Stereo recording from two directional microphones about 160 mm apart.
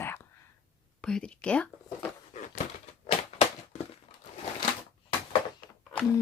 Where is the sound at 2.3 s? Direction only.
50° left (ahead or behind).